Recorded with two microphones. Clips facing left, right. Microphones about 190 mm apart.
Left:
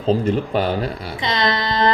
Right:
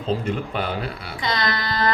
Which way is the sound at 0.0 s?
35° left (ahead or behind).